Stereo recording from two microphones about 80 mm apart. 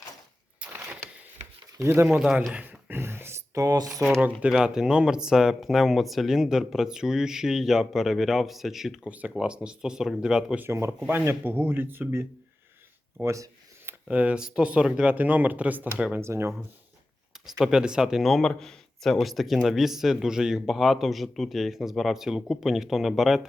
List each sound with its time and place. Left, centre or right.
0.7 s a sound: right
2.0 s speech: centre
2.5 s a sound: centre
3.5 s speech: right
4.4 s speech: centre
9.0 s speech: centre
10.7 s speech: right
13.2 s a sound: right
14.1 s speech: centre
16.1 s speech: right
17.6 s speech: centre